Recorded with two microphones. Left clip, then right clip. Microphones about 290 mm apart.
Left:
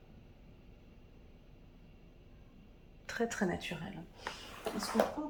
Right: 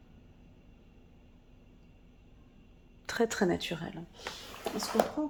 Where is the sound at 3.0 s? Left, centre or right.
Centre.